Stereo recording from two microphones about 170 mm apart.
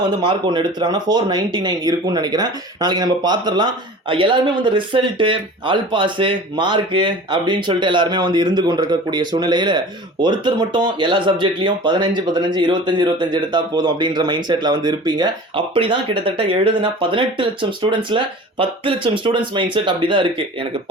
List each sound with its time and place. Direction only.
0.1 s speech: 25° right (ahead or behind)